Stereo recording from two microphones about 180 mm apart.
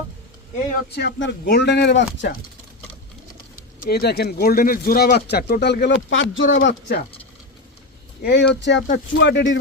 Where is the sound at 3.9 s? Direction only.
60° left (ahead or behind); by 6.5 s 90° left.